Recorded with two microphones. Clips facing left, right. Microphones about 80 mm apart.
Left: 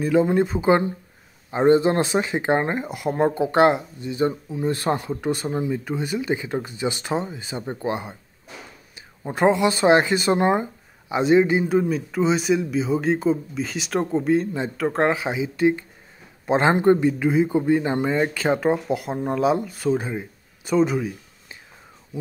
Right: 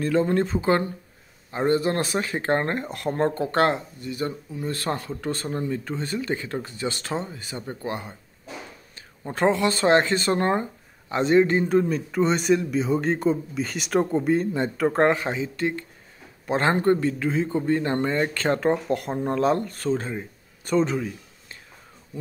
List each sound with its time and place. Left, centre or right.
0.0 s speech: centre